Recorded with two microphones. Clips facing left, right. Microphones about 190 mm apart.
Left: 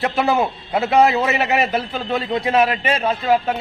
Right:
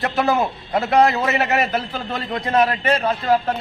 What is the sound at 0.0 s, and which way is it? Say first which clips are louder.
A man's voice: left 1 dB; 5° left (ahead or behind).